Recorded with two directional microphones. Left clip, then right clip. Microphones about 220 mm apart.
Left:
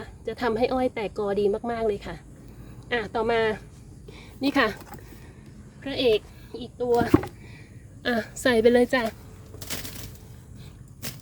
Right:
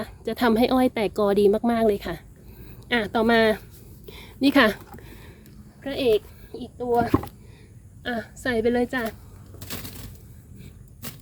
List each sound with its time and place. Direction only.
0.0 s speech: 40° right (ahead or behind)
4.1 s a woman's voice: 35° right (ahead or behind)
5.8 s a woman's voice: 10° right (ahead or behind)
8.0 s a woman's voice: 25° left (ahead or behind)
9.6 s a sound: 5° left (ahead or behind)